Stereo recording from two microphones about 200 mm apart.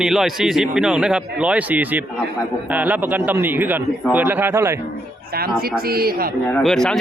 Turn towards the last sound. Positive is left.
turn(degrees=5)  # may be behind; listen again after turning